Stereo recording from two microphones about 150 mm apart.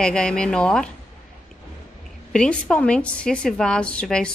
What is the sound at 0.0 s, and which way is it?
Speech, 5° left (ahead or behind).